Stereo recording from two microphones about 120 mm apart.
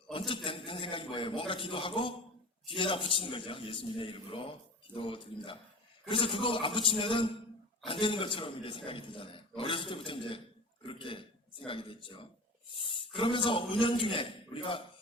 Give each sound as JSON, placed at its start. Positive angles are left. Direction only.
{"t": 0.1, "sound": "a man's voice", "side_deg": 45}